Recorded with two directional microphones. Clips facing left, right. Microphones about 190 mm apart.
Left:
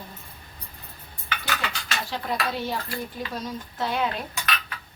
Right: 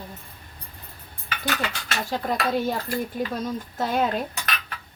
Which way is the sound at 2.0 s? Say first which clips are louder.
Right 4 dB; 45° right (ahead or behind).